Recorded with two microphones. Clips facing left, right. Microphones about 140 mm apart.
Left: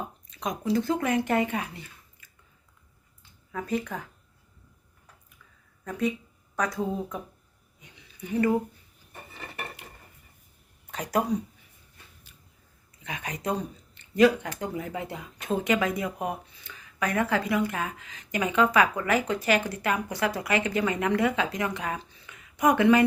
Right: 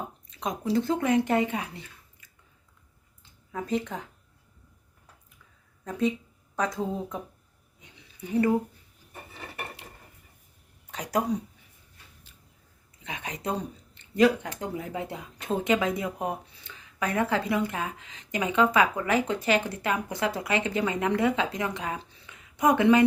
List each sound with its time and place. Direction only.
0.3 s speech: 25° right (ahead or behind)
3.5 s speech: 20° right (ahead or behind)
5.8 s speech: 25° right (ahead or behind)
10.9 s speech: 15° right (ahead or behind)
13.1 s speech: 25° right (ahead or behind)